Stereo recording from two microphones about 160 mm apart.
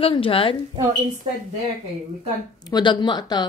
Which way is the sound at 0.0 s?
35° left (ahead or behind).